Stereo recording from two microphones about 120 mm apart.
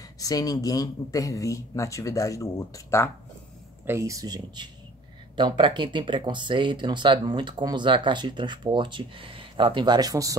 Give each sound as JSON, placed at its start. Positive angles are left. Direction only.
{"t": 0.2, "sound": "speech", "side_deg": 30}
{"t": 3.8, "sound": "speech", "side_deg": -25}